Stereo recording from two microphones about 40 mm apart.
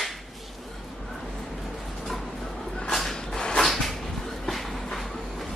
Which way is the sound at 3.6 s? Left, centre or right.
Centre.